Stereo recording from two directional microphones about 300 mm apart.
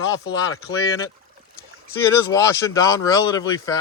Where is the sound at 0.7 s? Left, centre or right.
Centre.